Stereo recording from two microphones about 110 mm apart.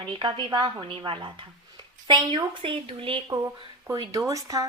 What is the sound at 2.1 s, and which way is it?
Speech, 45° right (ahead or behind).